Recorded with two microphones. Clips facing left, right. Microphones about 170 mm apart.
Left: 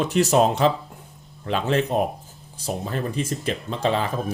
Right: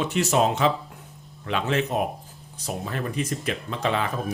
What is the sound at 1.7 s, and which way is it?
Speech, 35° left (ahead or behind).